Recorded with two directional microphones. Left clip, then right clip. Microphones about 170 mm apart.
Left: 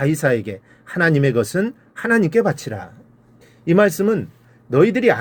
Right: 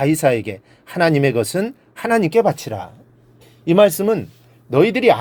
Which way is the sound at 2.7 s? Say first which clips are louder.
Right 3 dB; 50° right (ahead or behind).